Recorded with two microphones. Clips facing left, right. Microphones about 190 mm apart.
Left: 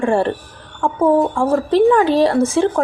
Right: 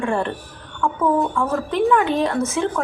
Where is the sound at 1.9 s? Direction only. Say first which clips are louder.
Left 5 dB; 35° left (ahead or behind).